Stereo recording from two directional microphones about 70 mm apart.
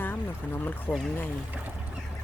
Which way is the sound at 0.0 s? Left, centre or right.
Left.